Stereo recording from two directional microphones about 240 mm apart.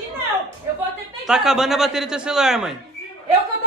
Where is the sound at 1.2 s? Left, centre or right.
Centre.